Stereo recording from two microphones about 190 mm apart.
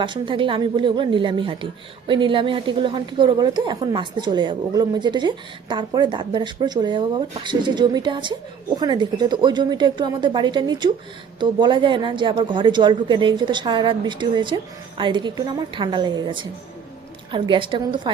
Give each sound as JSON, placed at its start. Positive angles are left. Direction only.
{"t": 0.0, "sound": "a woman's voice", "side_deg": -25}